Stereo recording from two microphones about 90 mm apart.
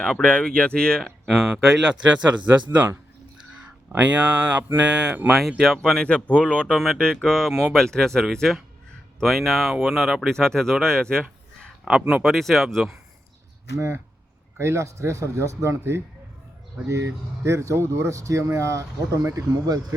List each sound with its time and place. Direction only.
0.0 s speech: 10° left (ahead or behind)
1.3 s speech: 5° right (ahead or behind)
3.6 s speech: 15° right (ahead or behind); by 6.7 s 15° left (ahead or behind)
6.7 s speech: centre (ahead or behind)
11.9 s speech: 10° right (ahead or behind)
12.2 s speech: centre (ahead or behind)
13.7 s speech: 30° right (ahead or behind)